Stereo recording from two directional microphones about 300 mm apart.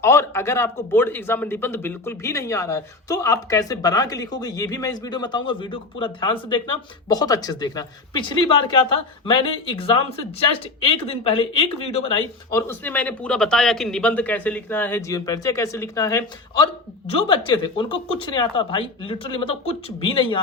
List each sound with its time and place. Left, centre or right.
0.0 s speech: centre
12.5 s speech: centre